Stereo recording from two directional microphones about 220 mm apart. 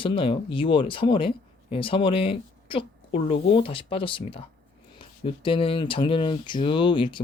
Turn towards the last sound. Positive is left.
turn(degrees=20)  # may be behind; listen again after turning